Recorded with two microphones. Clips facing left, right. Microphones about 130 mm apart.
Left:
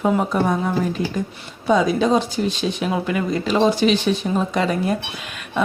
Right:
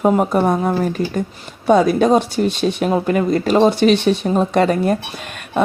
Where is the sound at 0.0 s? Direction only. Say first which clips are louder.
Right 4 dB; 45° right (ahead or behind).